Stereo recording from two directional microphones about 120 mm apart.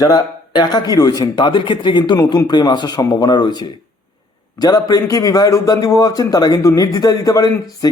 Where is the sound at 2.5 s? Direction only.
35° left (ahead or behind).